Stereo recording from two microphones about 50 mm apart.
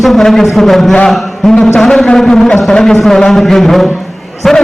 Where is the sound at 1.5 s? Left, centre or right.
Centre.